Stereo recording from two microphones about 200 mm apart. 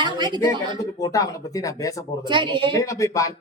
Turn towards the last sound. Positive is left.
turn(degrees=15)  # may be behind; listen again after turning